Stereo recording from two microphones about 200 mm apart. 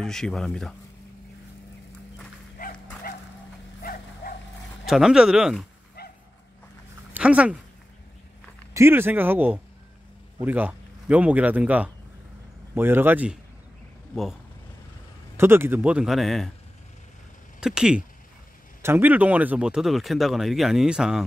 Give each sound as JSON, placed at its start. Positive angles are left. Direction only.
{"t": 0.0, "sound": "speech", "side_deg": 0}
{"t": 2.6, "sound": "dog", "side_deg": 45}
{"t": 3.8, "sound": "dog", "side_deg": 45}
{"t": 4.8, "sound": "speech", "side_deg": -5}
{"t": 6.0, "sound": "dog", "side_deg": 50}
{"t": 7.2, "sound": "speech", "side_deg": -5}
{"t": 8.7, "sound": "a man's voice", "side_deg": -10}
{"t": 15.3, "sound": "speech", "side_deg": -10}
{"t": 17.6, "sound": "speech", "side_deg": -5}